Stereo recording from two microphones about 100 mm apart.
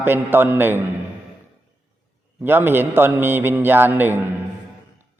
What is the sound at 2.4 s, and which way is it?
A man's voice, 20° right (ahead or behind).